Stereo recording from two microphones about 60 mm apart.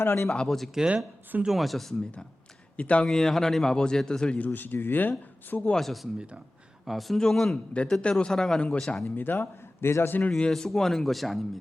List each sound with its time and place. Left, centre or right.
0.0 s speech: left
0.3 s speech: centre
0.8 s speech: centre
1.5 s speech: centre
2.7 s speech: left
3.1 s a man's voice: centre
4.4 s speech: left
5.7 s a man's voice: centre
7.5 s a man's voice: centre
9.0 s speech: left
10.5 s speech: centre